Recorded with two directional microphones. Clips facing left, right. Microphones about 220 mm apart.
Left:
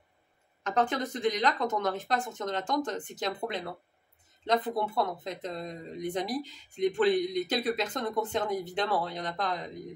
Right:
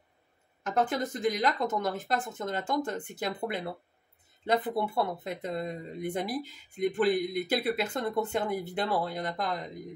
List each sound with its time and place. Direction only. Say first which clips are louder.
0.7 s speech: even; 10° right (ahead or behind)
4.5 s speech: even; 10° right (ahead or behind)